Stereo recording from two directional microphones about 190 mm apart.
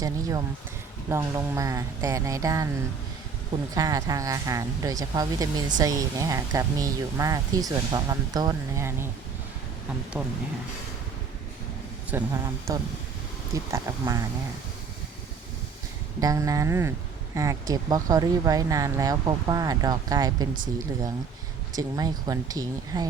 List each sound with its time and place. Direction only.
0.0 s speech: 20° right (ahead or behind)
10.2 s speech: 5° right (ahead or behind)
12.1 s speech: 15° right (ahead or behind)
16.2 s speech: 20° right (ahead or behind)
21.8 s speech: 20° right (ahead or behind)